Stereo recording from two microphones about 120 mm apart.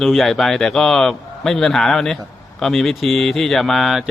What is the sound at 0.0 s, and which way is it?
A man's voice, centre (ahead or behind).